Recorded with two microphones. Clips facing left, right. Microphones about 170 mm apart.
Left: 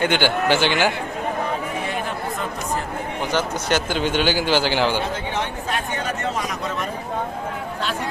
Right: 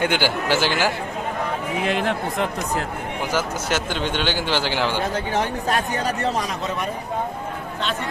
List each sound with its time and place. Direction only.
0.0 s a man's voice: 5° right (ahead or behind)
1.8 s speech: 90° right
3.3 s a man's voice: centre (ahead or behind)
5.3 s speech: 40° right (ahead or behind)